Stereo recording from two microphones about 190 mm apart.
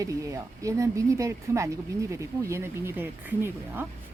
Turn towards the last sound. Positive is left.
turn(degrees=-10)  # may be behind; listen again after turning